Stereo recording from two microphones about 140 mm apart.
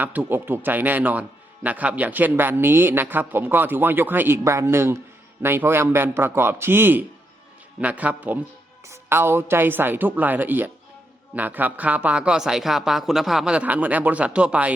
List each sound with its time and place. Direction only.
0.0 s speech: 10° right (ahead or behind)